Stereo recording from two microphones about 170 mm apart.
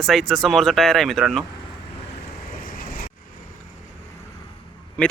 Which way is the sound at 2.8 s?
60° left (ahead or behind).